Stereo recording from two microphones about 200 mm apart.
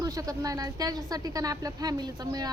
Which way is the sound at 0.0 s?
15° right (ahead or behind).